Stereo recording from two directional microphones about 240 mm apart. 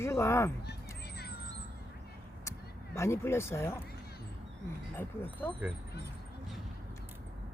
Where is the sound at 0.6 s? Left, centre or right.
Left.